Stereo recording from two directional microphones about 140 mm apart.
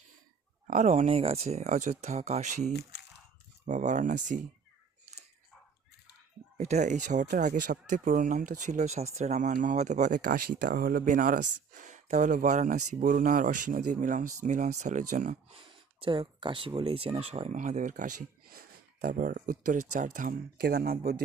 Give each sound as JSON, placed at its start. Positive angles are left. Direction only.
{"t": 0.7, "sound": "speech", "side_deg": -55}
{"t": 6.6, "sound": "speech", "side_deg": -55}
{"t": 15.5, "sound": "speech", "side_deg": -40}